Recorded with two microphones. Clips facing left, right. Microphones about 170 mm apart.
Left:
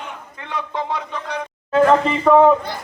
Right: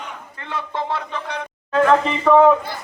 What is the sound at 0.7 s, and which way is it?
Speech, 15° left (ahead or behind).